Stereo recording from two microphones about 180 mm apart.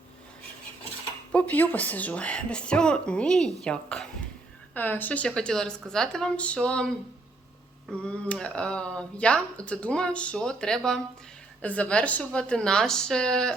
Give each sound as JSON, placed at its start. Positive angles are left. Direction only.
{"t": 1.3, "sound": "speech", "side_deg": 10}